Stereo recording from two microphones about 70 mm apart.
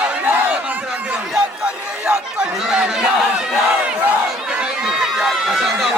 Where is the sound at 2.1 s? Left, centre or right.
Centre.